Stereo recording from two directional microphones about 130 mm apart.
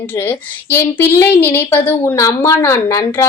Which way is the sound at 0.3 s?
15° left (ahead or behind).